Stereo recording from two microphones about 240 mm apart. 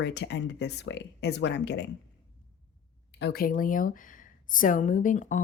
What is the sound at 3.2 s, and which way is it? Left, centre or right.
Speech, left.